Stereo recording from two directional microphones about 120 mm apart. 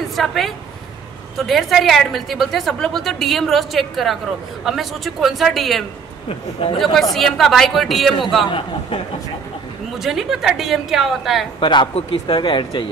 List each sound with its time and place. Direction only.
0.1 s a woman's voice: centre (ahead or behind)
8.5 s a man's voice: 45° left (ahead or behind)
9.9 s a woman's voice: 5° right (ahead or behind)
11.6 s a man's voice: 45° left (ahead or behind)